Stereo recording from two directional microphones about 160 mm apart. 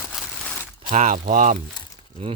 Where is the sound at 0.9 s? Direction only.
50° right (ahead or behind).